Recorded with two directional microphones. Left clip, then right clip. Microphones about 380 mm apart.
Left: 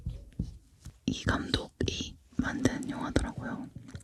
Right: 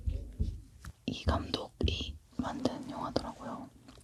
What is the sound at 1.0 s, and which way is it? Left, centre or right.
Whispering, left.